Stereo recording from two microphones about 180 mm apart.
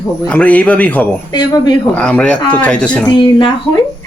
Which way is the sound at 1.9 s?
5° left (ahead or behind).